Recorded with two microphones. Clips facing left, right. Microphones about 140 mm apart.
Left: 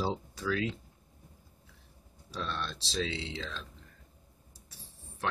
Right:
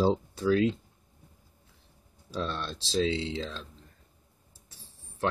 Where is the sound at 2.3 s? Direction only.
35° right (ahead or behind).